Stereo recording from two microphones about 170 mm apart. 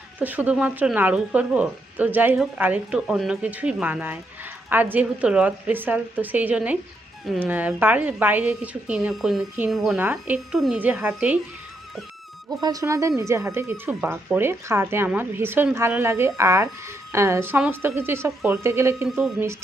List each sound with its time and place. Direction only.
0.2 s speech: 10° right (ahead or behind)
12.6 s speech: 20° right (ahead or behind)